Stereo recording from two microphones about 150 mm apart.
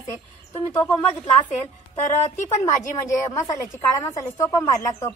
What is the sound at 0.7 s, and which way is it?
Speech, 15° left (ahead or behind).